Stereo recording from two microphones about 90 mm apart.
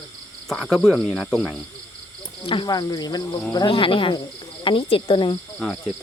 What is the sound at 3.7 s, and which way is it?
Speech, 75° left (ahead or behind).